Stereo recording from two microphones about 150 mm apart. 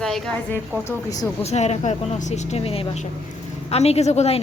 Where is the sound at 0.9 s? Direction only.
25° left (ahead or behind).